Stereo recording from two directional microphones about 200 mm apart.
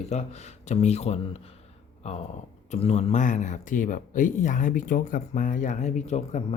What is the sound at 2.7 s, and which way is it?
Speech, 35° left (ahead or behind).